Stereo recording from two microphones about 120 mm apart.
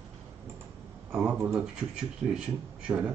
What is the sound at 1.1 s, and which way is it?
Speech, 5° right (ahead or behind).